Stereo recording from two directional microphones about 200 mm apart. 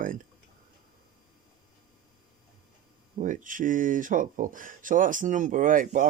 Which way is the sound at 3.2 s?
40° right (ahead or behind).